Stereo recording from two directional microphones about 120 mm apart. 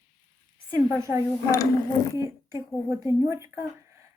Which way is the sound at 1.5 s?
30° left (ahead or behind).